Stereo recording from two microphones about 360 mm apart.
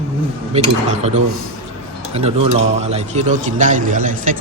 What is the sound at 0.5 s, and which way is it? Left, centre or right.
A man's voice, centre.